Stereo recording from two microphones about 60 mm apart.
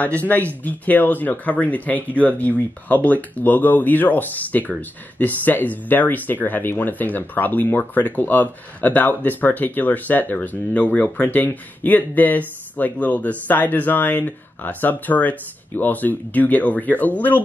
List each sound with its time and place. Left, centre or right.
0.0 s speech: left